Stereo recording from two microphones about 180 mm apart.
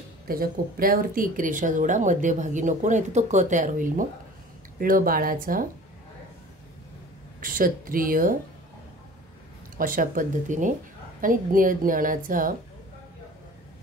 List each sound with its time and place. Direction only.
0.3 s speech: 55° right (ahead or behind)
7.3 s speech: 50° right (ahead or behind)
9.8 s speech: 50° right (ahead or behind)